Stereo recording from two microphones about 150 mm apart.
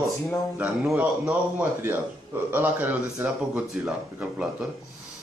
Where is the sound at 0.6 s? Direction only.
10° right (ahead or behind).